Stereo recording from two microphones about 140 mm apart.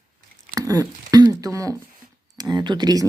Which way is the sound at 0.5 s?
25° right (ahead or behind).